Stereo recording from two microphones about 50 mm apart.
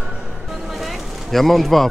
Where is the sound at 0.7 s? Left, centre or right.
Centre.